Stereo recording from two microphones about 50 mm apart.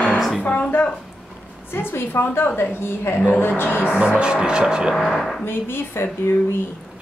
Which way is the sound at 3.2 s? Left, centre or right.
Left.